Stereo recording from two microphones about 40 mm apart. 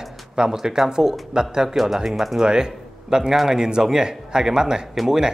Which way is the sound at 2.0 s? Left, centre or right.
Centre.